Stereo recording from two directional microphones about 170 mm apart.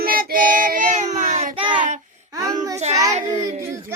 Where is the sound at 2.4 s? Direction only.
20° right (ahead or behind).